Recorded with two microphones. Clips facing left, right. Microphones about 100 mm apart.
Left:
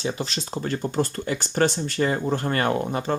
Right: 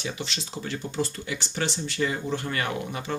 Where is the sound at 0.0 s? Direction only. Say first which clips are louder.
Left 5 dB; 40° left (ahead or behind).